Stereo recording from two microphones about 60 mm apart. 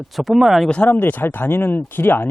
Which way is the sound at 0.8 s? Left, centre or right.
Left.